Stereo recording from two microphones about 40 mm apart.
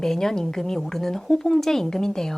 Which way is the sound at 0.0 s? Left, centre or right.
Centre.